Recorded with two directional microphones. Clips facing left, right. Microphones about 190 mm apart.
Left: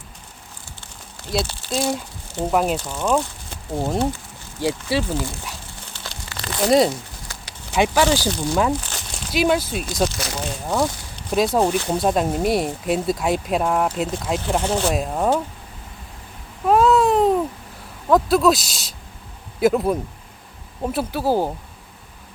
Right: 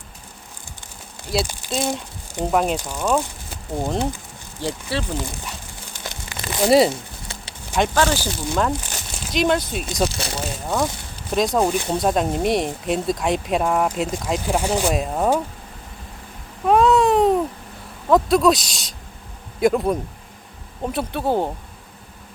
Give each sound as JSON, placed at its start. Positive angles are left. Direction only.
{"t": 1.3, "sound": "speech", "side_deg": 0}
{"t": 4.6, "sound": "speech", "side_deg": 10}
{"t": 6.0, "sound": "crumpling", "side_deg": -20}
{"t": 6.7, "sound": "speech", "side_deg": -5}
{"t": 6.9, "sound": "a sound", "side_deg": -25}
{"t": 7.7, "sound": "speech", "side_deg": 10}
{"t": 8.9, "sound": "crumpling", "side_deg": -5}
{"t": 9.3, "sound": "speech", "side_deg": 5}
{"t": 10.2, "sound": "speech", "side_deg": -30}
{"t": 10.4, "sound": "speech", "side_deg": 0}
{"t": 14.4, "sound": "speech", "side_deg": -10}
{"t": 16.6, "sound": "baby cry", "side_deg": 0}
{"t": 18.1, "sound": "speech", "side_deg": 0}